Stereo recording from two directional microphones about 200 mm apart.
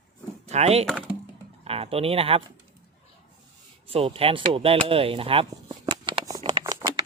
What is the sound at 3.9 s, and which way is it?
Speech, 30° right (ahead or behind).